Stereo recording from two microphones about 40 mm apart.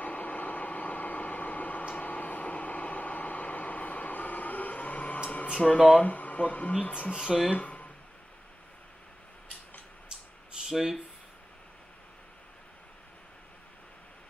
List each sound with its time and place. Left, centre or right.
0.0 s vehicle: left
5.6 s speech: centre
6.0 s speech: left
7.2 s speech: centre
7.5 s a sound: left
10.7 s speech: centre